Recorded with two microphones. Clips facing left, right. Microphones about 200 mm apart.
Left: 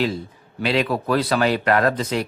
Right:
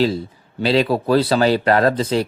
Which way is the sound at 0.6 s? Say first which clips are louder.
Right 4 dB; 30° right (ahead or behind).